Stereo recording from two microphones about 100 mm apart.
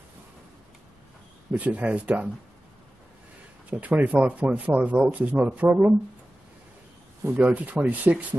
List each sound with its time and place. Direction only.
1.5 s speech: 10° right (ahead or behind)
3.7 s speech: 15° right (ahead or behind)
7.2 s speech: 15° right (ahead or behind)